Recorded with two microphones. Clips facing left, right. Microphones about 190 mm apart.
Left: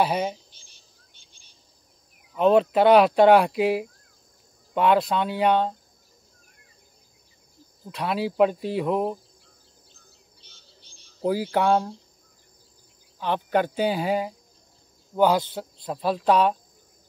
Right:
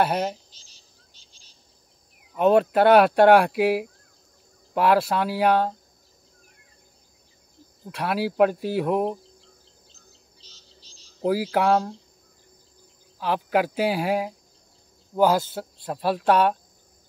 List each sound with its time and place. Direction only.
0.0 s speech: 5° right (ahead or behind)
0.5 s a sound: 55° left (ahead or behind)
2.3 s speech: 5° right (ahead or behind)
7.9 s speech: 5° right (ahead or behind)
9.9 s a sound: 55° left (ahead or behind)
11.2 s speech: 5° right (ahead or behind)
13.2 s speech: 5° right (ahead or behind)